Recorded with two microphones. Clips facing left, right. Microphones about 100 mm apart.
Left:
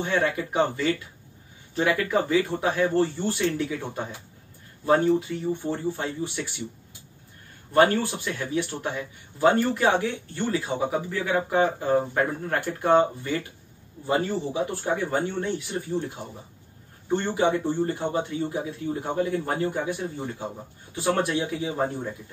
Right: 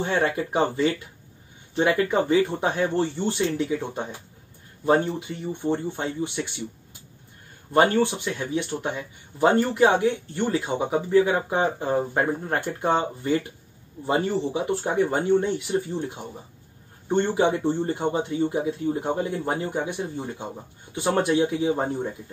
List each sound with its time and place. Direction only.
0.0 s speech: 30° right (ahead or behind)
7.7 s speech: 20° right (ahead or behind)
17.3 s speech: 25° right (ahead or behind)